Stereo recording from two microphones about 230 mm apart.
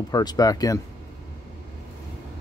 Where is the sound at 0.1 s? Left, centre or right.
Centre.